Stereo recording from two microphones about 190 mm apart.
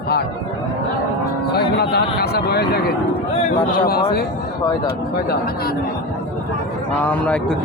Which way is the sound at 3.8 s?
55° left (ahead or behind).